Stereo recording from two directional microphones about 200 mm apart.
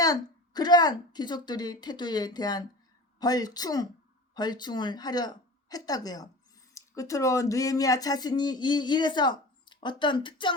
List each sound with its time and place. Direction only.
0.0 s speech: 20° left (ahead or behind)